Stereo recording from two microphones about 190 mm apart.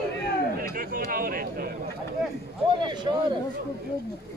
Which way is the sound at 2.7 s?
25° right (ahead or behind).